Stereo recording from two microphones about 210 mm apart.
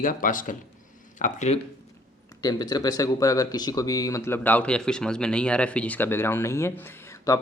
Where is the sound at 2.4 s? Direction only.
20° left (ahead or behind).